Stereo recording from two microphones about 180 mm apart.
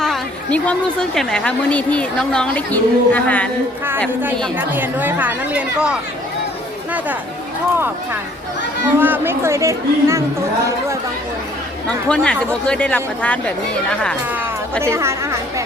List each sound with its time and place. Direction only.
0.0 s a woman's voice: 5° left (ahead or behind)
4.5 s speech: 10° right (ahead or behind)
9.0 s speech: 10° right (ahead or behind)
11.9 s speech: 5° left (ahead or behind)
14.3 s speech: 10° right (ahead or behind)